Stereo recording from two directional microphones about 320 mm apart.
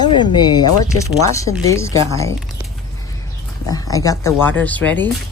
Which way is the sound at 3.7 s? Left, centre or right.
Centre.